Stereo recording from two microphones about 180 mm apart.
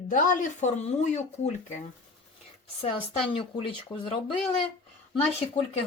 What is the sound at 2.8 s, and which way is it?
Speech, 30° left (ahead or behind).